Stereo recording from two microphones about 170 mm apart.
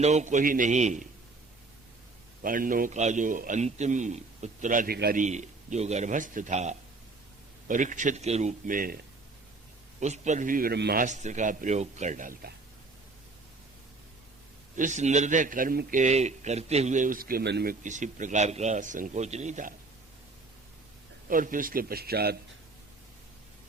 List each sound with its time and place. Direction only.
0.0 s a man's voice: 40° right (ahead or behind)
2.4 s a man's voice: 55° right (ahead or behind)
4.9 s a man's voice: 65° right (ahead or behind)
5.2 s a man's voice: 45° right (ahead or behind)
10.0 s a man's voice: 45° right (ahead or behind); by 11.0 s 70° right (ahead or behind)
11.0 s a man's voice: 45° right (ahead or behind)
14.8 s a man's voice: 45° right (ahead or behind); by 17.7 s 75° right (ahead or behind)
17.8 s a man's voice: 45° right (ahead or behind)
21.2 s a man's voice: 55° right (ahead or behind)